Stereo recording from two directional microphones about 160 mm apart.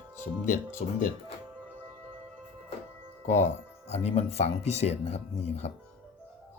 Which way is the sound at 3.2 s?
45° left (ahead or behind).